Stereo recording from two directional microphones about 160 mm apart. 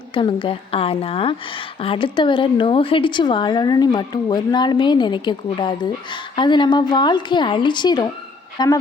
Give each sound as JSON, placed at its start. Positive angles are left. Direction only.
{"t": 0.1, "sound": "a woman's voice", "side_deg": 30}